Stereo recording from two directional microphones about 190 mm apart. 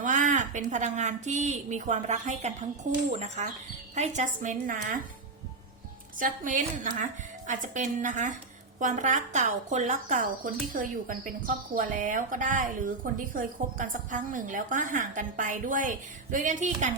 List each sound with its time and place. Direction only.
0.0 s a woman's voice: 40° right (ahead or behind)
6.1 s speech: 45° right (ahead or behind)